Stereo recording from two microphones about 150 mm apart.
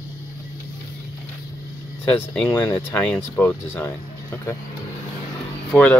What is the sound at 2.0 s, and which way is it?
Speech, 10° left (ahead or behind).